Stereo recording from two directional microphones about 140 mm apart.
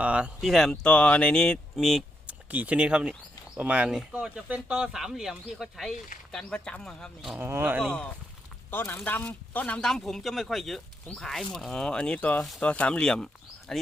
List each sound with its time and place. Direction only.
0.0 s speech: 10° right (ahead or behind)
2.5 s speech: 10° right (ahead or behind)
7.3 s speech: 15° right (ahead or behind)
8.7 s speech: 15° left (ahead or behind)